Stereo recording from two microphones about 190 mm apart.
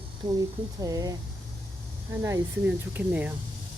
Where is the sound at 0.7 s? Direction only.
20° right (ahead or behind).